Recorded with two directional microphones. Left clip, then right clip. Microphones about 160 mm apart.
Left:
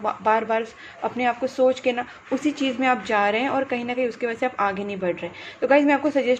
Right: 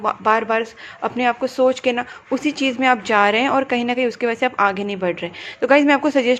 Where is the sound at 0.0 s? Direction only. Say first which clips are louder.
Right 4 dB; 30° right (ahead or behind).